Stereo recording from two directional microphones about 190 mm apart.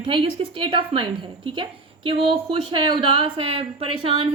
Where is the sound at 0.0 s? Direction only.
25° right (ahead or behind).